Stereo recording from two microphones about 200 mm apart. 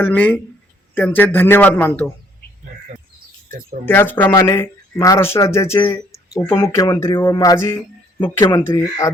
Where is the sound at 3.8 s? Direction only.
10° left (ahead or behind).